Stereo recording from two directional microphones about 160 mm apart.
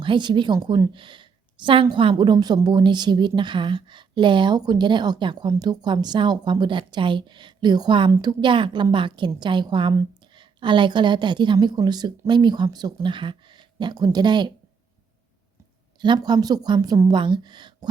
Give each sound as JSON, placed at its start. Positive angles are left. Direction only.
{"t": 0.0, "sound": "a woman's voice", "side_deg": -30}
{"t": 16.0, "sound": "a woman's voice", "side_deg": -30}